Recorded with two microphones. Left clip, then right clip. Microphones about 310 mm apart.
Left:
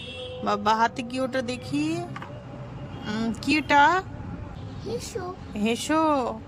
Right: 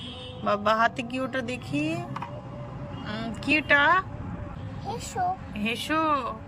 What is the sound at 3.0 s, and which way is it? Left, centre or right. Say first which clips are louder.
Speech: left 3 dB; centre.